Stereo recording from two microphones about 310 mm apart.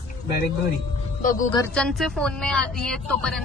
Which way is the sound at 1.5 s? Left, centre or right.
Centre.